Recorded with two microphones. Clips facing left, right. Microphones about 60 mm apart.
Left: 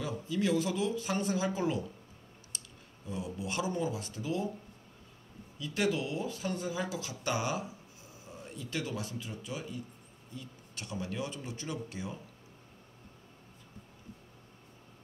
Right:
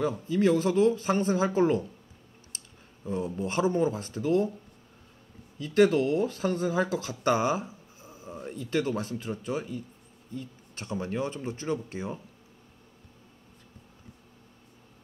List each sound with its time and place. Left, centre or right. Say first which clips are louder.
0.0 s speech: right 8 dB; right
2.5 s a sound: even; right
3.1 s speech: right 7 dB; right
5.6 s speech: right 10 dB; right